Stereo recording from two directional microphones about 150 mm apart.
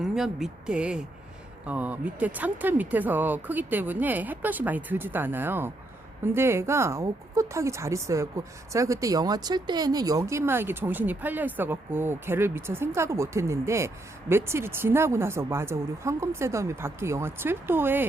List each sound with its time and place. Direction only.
0.0 s speech: 5° right (ahead or behind)